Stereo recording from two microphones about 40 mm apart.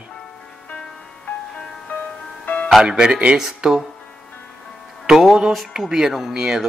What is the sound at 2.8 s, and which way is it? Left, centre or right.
Speech, centre.